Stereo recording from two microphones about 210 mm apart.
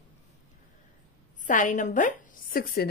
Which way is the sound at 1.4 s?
35° left (ahead or behind).